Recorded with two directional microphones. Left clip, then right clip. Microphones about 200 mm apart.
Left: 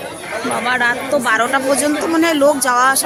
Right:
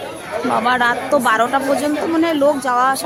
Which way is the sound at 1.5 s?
Centre (ahead or behind).